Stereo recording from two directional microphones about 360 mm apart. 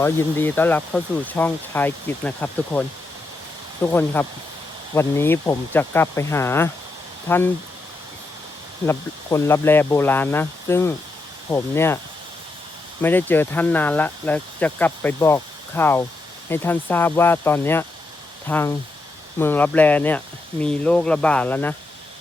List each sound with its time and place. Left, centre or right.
0.0 s speech: centre
3.9 s speech: centre
8.9 s speech: centre
13.0 s speech: centre